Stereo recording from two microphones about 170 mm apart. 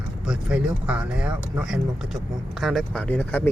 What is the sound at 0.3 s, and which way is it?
Speech, 5° right (ahead or behind).